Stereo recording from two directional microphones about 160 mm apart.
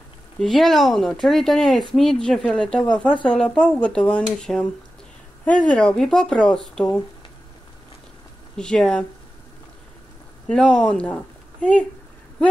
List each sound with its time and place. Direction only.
0.4 s speech: centre (ahead or behind)
8.5 s speech: 5° left (ahead or behind)
10.5 s speech: 5° left (ahead or behind)